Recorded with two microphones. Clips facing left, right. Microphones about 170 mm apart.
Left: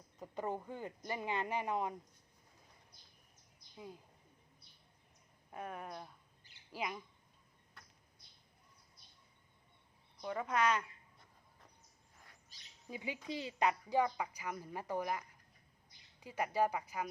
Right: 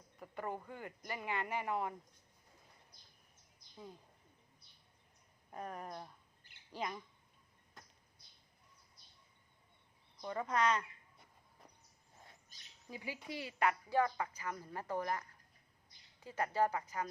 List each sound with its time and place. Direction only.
0.2 s speech: 20° left (ahead or behind)
5.5 s a woman's voice: 5° left (ahead or behind)
10.2 s speech: 5° left (ahead or behind)
12.5 s bird: 50° right (ahead or behind)
12.9 s a woman's voice: 20° left (ahead or behind)